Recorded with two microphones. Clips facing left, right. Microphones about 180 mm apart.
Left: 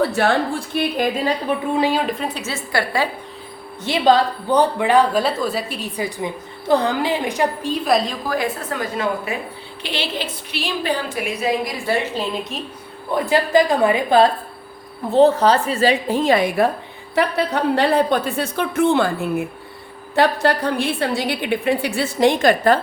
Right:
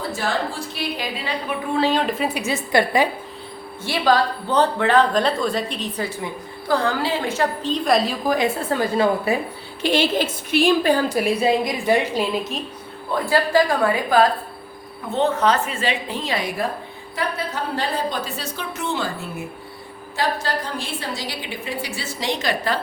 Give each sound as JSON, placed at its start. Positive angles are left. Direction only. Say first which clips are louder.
{"t": 0.0, "sound": "a woman's voice", "louder": "left 7 dB", "side_deg": 65}
{"t": 1.7, "sound": "a woman's voice", "louder": "right 2 dB", "side_deg": 10}
{"t": 3.8, "sound": "a woman's voice", "louder": "left 3 dB", "side_deg": 20}
{"t": 8.3, "sound": "a woman's voice", "louder": "right 3 dB", "side_deg": -25}
{"t": 9.8, "sound": "a woman's voice", "louder": "right 7 dB", "side_deg": -45}
{"t": 13.2, "sound": "a woman's voice", "louder": "left 2 dB", "side_deg": 20}
{"t": 15.1, "sound": "a woman's voice", "louder": "left 6 dB", "side_deg": 35}
{"t": 17.2, "sound": "a woman's voice", "louder": "left 7 dB", "side_deg": 70}